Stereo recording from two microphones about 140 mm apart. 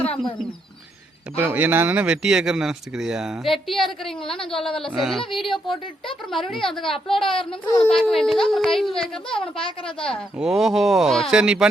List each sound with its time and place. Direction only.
1.4 s speech: 15° right (ahead or behind); by 6.9 s centre (ahead or behind)
6.9 s a woman's voice: 40° left (ahead or behind)
7.6 s speech: 5° left (ahead or behind)